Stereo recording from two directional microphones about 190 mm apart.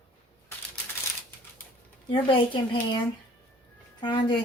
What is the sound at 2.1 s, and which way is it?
Speech, 25° left (ahead or behind).